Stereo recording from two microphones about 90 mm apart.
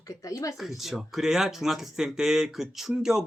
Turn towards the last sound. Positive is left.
turn(degrees=-5)  # may be behind; listen again after turning